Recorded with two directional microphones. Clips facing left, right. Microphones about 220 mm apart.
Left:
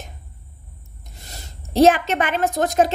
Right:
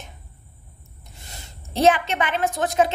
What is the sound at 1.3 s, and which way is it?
A woman's voice, 40° left (ahead or behind).